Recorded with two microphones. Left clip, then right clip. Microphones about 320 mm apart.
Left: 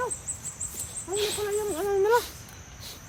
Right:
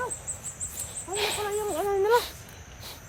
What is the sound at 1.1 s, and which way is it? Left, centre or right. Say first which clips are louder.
Cricket: even; right.